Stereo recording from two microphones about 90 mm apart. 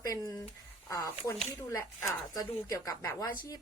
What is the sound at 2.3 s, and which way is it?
A woman's voice, 45° left (ahead or behind).